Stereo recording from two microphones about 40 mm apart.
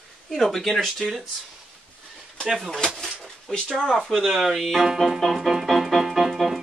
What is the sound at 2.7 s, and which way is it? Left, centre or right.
Speech, centre.